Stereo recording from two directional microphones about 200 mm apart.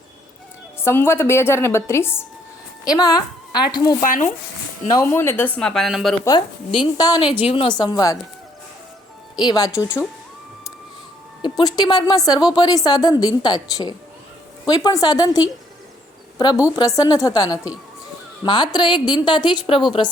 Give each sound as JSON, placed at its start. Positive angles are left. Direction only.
{"t": 0.9, "sound": "a woman's voice", "side_deg": 10}
{"t": 4.0, "sound": "speech", "side_deg": 40}
{"t": 4.9, "sound": "speech", "side_deg": 10}
{"t": 6.2, "sound": "a woman's voice", "side_deg": 20}
{"t": 9.3, "sound": "a woman's voice", "side_deg": 20}
{"t": 11.4, "sound": "a woman's voice", "side_deg": 20}
{"t": 16.6, "sound": "a woman's voice", "side_deg": 15}